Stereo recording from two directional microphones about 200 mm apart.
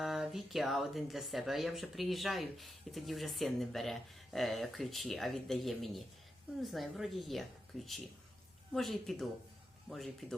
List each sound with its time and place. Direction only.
0.0 s speech: centre (ahead or behind)